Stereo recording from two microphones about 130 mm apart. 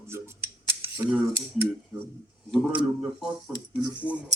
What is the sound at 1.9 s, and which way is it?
Speech, 25° right (ahead or behind).